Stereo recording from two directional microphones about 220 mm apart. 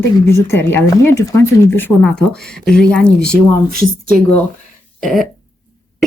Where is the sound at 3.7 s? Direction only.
40° right (ahead or behind).